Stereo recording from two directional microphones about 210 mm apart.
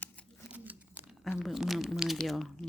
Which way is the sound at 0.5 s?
10° right (ahead or behind).